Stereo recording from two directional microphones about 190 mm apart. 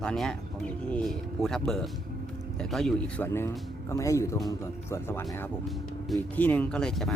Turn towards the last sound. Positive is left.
turn(degrees=5)  # may be behind; listen again after turning